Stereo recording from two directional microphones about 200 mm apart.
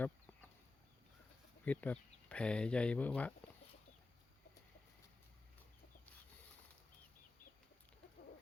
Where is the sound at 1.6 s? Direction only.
5° left (ahead or behind).